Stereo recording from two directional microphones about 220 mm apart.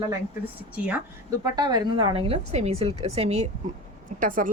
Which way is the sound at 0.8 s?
5° right (ahead or behind).